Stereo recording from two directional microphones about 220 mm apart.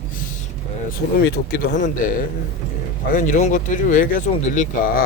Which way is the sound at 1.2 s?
40° left (ahead or behind).